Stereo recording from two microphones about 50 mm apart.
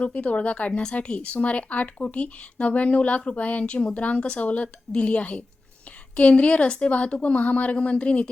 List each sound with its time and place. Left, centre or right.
0.0 s speech: left